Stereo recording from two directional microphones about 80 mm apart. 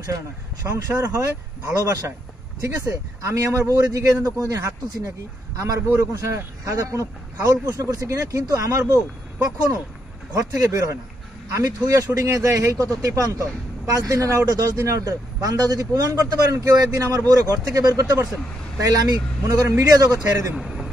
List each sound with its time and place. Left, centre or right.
0.7 s a man's voice: right
3.2 s a man's voice: right
20.5 s a sound: centre